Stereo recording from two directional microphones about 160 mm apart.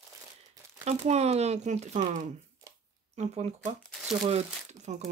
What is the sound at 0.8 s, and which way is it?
Speech, 45° right (ahead or behind).